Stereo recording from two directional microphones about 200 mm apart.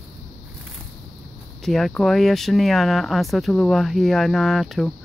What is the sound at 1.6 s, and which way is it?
Speech, centre (ahead or behind).